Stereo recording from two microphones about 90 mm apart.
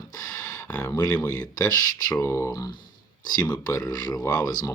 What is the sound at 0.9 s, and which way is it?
Speech, 45° left (ahead or behind).